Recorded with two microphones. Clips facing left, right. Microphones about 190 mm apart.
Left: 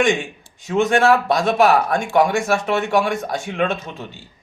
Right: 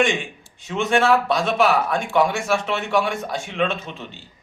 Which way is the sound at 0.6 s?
45° left (ahead or behind).